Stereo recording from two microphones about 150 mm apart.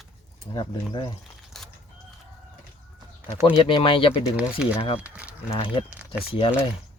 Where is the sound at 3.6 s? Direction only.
35° left (ahead or behind).